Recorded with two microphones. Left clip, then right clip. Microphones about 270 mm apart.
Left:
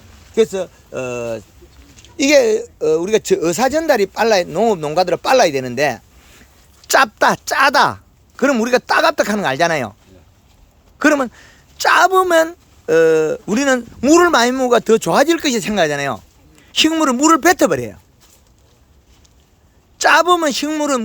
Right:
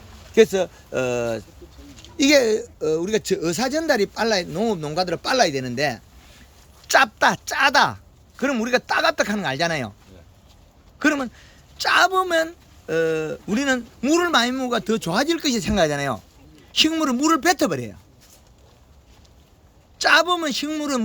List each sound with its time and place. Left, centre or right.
0.3 s a woman's voice: centre
11.0 s a woman's voice: centre
20.0 s a woman's voice: centre